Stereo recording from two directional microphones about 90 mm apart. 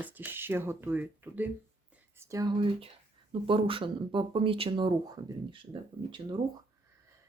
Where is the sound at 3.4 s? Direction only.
75° right (ahead or behind).